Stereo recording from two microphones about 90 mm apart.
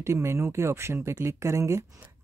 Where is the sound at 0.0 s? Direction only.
30° right (ahead or behind).